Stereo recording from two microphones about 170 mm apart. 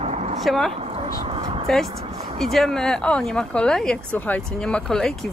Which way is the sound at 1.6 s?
Centre (ahead or behind).